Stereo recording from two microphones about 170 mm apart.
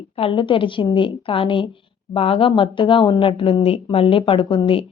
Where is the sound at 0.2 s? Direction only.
30° left (ahead or behind).